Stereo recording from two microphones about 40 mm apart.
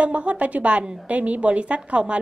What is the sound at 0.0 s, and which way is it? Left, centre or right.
A woman's voice, right.